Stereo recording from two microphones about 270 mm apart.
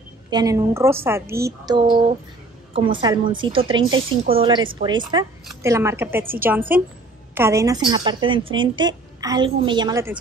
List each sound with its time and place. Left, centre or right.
0.3 s a woman's voice: centre
5.4 s a sound: centre
5.7 s a woman's voice: centre